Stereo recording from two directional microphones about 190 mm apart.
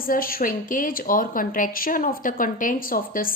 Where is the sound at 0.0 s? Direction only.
50° left (ahead or behind).